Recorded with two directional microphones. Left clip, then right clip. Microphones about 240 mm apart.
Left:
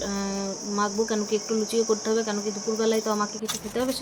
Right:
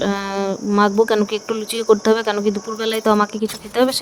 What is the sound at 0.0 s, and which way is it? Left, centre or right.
Speech, right.